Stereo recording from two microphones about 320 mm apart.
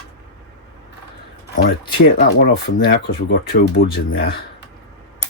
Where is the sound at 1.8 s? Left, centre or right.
Left.